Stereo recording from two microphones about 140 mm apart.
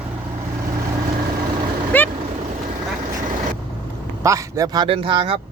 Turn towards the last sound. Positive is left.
turn(degrees=-40)  # may be behind; listen again after turning